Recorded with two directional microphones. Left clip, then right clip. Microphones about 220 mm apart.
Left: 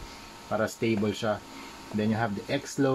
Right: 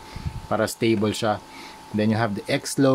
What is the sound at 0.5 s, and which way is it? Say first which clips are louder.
Speech: right 6 dB; 40° right (ahead or behind).